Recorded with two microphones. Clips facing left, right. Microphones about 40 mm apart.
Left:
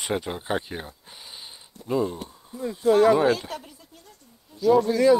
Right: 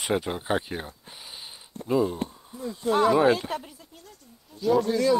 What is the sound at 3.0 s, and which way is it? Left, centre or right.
Speech, centre.